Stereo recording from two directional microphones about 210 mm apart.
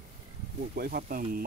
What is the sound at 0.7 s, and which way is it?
Speech, 45° right (ahead or behind).